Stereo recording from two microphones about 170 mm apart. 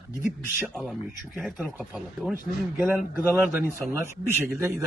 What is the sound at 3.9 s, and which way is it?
Speech, 15° right (ahead or behind).